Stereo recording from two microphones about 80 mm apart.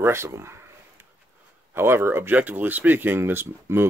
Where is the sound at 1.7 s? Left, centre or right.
Right.